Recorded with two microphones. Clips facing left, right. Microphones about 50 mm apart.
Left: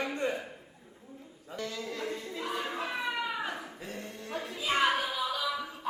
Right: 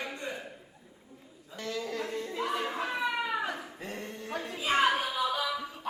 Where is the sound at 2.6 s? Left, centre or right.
Centre.